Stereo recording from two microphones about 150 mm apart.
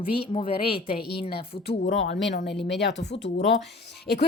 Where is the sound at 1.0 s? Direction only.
90° left.